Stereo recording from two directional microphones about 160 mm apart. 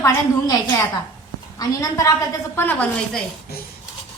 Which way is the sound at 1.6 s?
20° left (ahead or behind).